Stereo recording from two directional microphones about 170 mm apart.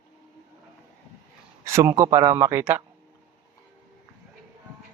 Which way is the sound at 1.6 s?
15° right (ahead or behind).